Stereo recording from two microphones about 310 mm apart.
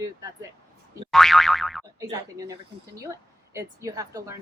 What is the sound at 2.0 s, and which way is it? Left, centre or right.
A woman's voice, centre.